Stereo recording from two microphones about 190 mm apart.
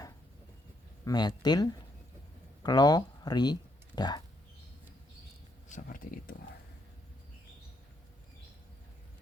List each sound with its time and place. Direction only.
1.0 s speech: 20° left (ahead or behind)
5.6 s speech: 45° left (ahead or behind)